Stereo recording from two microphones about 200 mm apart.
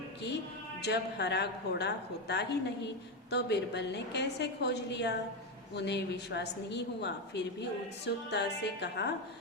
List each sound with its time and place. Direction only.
0.8 s a woman's voice: 60° left (ahead or behind)